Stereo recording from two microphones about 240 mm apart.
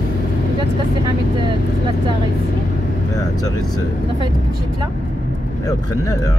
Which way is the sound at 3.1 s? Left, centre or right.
Centre.